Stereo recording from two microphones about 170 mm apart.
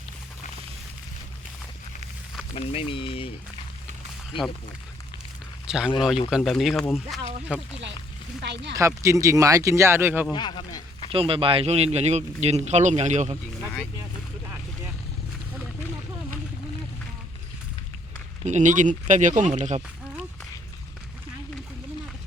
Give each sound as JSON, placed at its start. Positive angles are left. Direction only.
{"t": 2.6, "sound": "speech", "side_deg": 35}
{"t": 5.6, "sound": "speech", "side_deg": -5}
{"t": 8.4, "sound": "speech", "side_deg": -85}
{"t": 8.7, "sound": "speech", "side_deg": -20}
{"t": 10.3, "sound": "speech", "side_deg": 25}
{"t": 11.1, "sound": "a man's voice", "side_deg": -35}
{"t": 18.4, "sound": "speech", "side_deg": -45}